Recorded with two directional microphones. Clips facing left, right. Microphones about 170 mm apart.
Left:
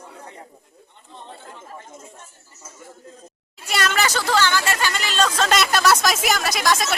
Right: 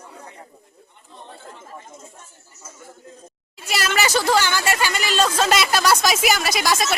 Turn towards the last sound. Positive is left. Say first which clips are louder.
# even
turn(degrees=-5)  # may be behind; listen again after turning